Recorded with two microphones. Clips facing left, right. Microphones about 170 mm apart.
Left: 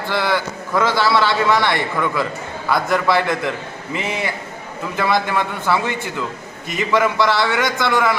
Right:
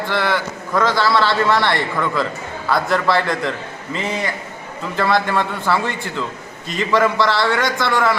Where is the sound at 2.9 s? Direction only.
15° left (ahead or behind).